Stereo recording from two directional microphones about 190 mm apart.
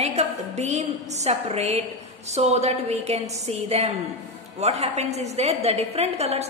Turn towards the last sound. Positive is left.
turn(degrees=-35)  # may be behind; listen again after turning